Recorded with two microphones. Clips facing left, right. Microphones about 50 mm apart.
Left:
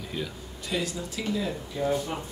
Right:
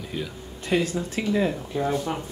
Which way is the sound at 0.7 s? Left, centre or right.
Right.